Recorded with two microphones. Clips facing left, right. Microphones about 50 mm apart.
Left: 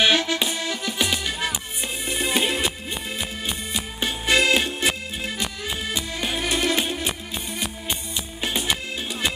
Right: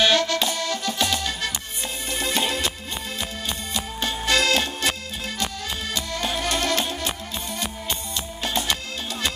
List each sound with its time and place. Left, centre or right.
0.0 s accordion: centre
2.0 s music: centre